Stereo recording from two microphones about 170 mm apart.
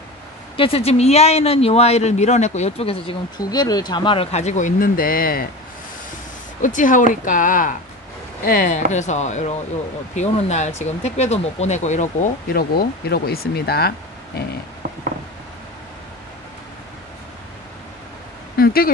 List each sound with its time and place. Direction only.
0.6 s speech: 35° left (ahead or behind); by 5.5 s 60° left (ahead or behind)
6.6 s speech: 50° left (ahead or behind)
12.5 s speech: 65° left (ahead or behind)
18.6 s a sound: 60° left (ahead or behind)